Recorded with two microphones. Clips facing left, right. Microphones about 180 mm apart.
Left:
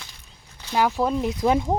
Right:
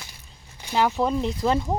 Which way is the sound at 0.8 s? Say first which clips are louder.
Even; centre (ahead or behind).